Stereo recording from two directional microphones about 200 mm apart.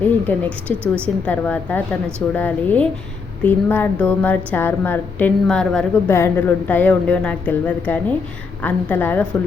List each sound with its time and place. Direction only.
0.3 s a woman's voice: 10° left (ahead or behind)